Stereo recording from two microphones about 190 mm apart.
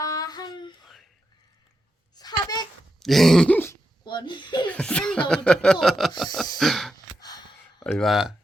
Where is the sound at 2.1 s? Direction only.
20° left (ahead or behind).